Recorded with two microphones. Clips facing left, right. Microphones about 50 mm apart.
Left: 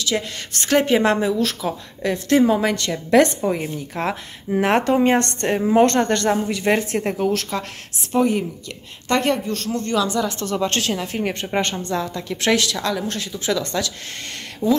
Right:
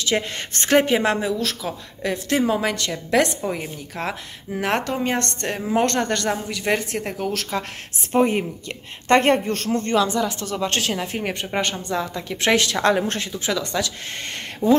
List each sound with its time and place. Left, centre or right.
0.0 s speech: right
0.7 s a woman's voice: centre
7.6 s a woman's voice: centre
8.1 s speech: right
9.9 s speech: centre
10.4 s a woman's voice: centre
12.5 s speech: right
13.3 s a woman's voice: centre